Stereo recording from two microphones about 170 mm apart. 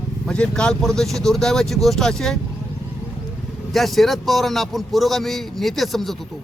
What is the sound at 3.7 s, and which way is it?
Speech, centre (ahead or behind).